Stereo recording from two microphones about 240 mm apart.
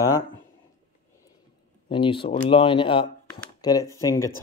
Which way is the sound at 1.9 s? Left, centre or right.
Left.